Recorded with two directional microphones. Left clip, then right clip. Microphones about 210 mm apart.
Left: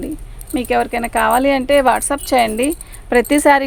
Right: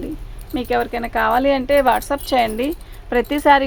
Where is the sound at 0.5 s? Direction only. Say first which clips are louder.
Left 3 dB; 40° left (ahead or behind).